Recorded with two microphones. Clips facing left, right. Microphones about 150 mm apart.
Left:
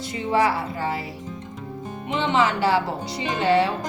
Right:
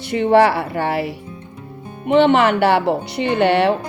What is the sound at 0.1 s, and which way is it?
Speech, 70° right (ahead or behind).